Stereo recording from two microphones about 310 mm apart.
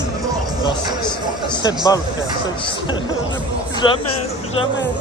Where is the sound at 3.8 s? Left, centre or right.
Centre.